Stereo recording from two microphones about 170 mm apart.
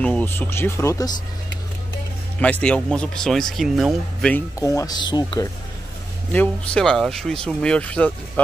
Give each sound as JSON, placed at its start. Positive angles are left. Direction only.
{"t": 0.0, "sound": "speech", "side_deg": 10}
{"t": 2.4, "sound": "speech", "side_deg": 5}
{"t": 4.6, "sound": "speech", "side_deg": 20}
{"t": 6.3, "sound": "speech", "side_deg": 5}